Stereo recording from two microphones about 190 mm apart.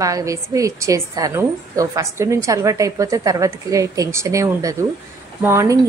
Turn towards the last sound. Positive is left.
turn(degrees=-15)  # may be behind; listen again after turning